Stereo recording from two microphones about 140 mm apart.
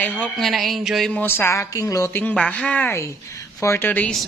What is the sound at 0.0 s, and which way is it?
Speech, 10° left (ahead or behind).